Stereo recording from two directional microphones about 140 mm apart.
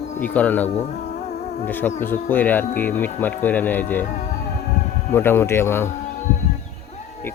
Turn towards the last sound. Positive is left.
turn(degrees=15)  # may be behind; listen again after turning